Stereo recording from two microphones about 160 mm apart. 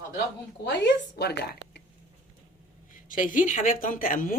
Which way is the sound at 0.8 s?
90° left.